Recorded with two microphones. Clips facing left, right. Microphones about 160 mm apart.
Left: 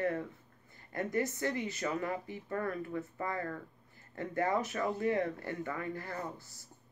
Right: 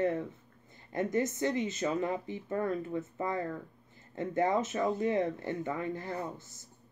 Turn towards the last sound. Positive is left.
turn(degrees=-20)  # may be behind; listen again after turning